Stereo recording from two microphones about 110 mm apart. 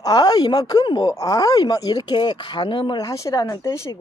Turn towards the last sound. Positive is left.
turn(degrees=25)  # may be behind; listen again after turning